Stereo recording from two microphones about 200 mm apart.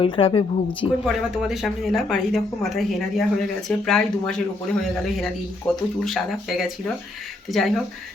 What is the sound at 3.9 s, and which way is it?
Speech, 5° left (ahead or behind).